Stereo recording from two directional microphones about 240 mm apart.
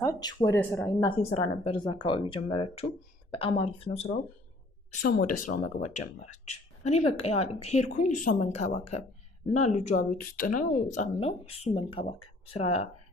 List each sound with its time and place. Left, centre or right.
0.0 s speech: centre
1.1 s speech: left